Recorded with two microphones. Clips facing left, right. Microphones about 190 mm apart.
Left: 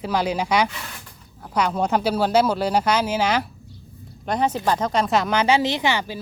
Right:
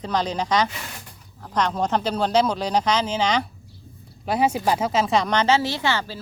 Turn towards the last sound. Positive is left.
turn(degrees=15)  # may be behind; listen again after turning